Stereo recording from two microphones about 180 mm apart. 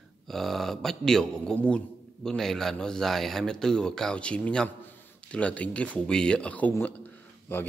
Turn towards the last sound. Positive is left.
turn(degrees=10)  # may be behind; listen again after turning